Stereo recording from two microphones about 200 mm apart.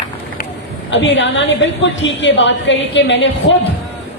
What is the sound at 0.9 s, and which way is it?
A woman's voice, 65° left (ahead or behind).